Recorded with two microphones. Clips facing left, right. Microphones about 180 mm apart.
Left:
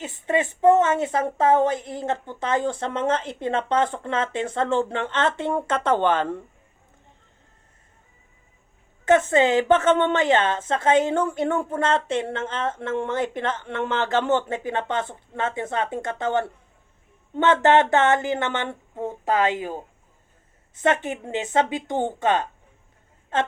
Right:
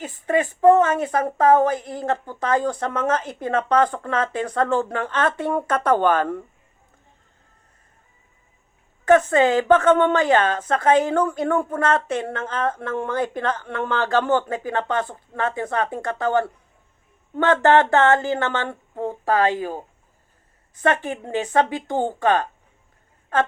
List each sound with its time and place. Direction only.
0.0 s a woman's voice: 25° left (ahead or behind)
9.0 s a woman's voice: 20° left (ahead or behind)
20.7 s a woman's voice: 20° left (ahead or behind)